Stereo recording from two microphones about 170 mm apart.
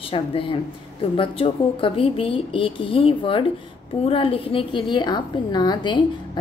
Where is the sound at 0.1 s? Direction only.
30° left (ahead or behind).